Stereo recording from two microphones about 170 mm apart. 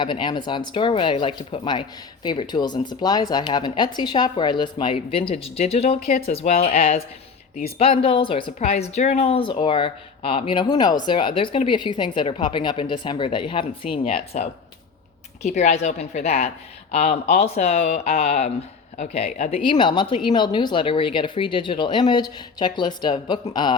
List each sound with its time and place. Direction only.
0.0 s speech: 30° left (ahead or behind)
15.4 s speech: 45° left (ahead or behind); by 23.7 s 25° left (ahead or behind)